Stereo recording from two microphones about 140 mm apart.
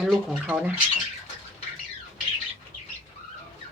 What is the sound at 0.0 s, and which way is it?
Speech, 5° right (ahead or behind).